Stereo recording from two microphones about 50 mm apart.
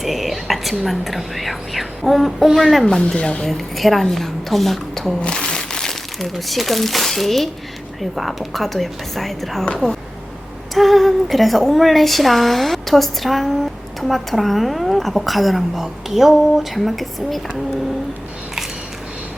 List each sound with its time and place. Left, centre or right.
0.0 s whispering: centre
0.9 s a woman's voice: centre
3.2 s speech: left
3.4 s a woman's voice: centre
5.2 s crumpling: centre
6.1 s a woman's voice: centre
10.8 s a woman's voice: centre